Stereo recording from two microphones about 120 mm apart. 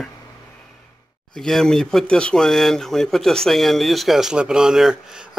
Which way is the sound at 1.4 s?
5° left (ahead or behind).